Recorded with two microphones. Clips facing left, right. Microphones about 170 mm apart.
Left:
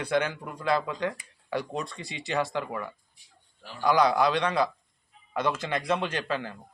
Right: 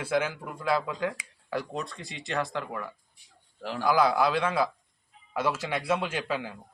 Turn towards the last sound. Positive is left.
turn(degrees=-10)  # may be behind; listen again after turning